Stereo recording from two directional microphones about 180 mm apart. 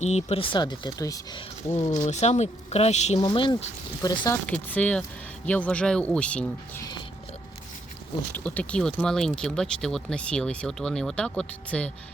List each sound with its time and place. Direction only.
0.0 s speech: 35° left (ahead or behind); by 1.8 s 20° left (ahead or behind)
2.0 s speech: 40° left (ahead or behind)
3.2 s speech: 25° left (ahead or behind)
4.4 s speech: 10° left (ahead or behind)
8.4 s speech: 5° left (ahead or behind)